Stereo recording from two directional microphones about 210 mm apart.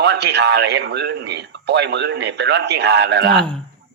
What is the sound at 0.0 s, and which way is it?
Speech, 55° right (ahead or behind).